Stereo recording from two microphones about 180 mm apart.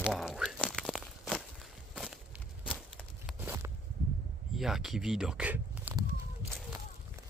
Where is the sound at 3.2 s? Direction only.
10° right (ahead or behind).